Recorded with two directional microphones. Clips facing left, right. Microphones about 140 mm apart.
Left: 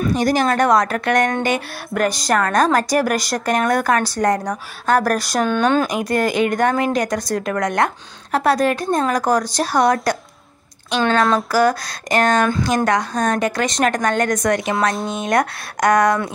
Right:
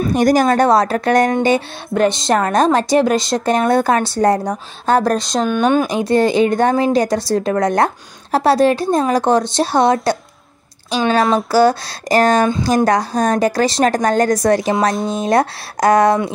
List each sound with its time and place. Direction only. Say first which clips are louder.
0.1 s a woman's voice: right 6 dB; 45° right (ahead or behind); by 5.9 s 10° right (ahead or behind)
5.9 s speech: right 5 dB; 30° right (ahead or behind)
10.9 s speech: right 2 dB; 15° right (ahead or behind)
11.3 s a woman's voice: right 4 dB; 30° right (ahead or behind)